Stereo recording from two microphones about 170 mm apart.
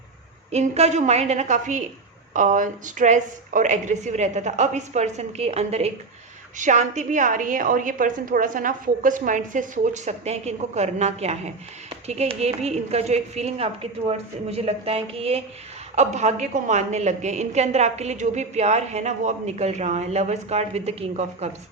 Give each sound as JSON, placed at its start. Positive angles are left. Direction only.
{"t": 0.5, "sound": "a woman's voice", "side_deg": -40}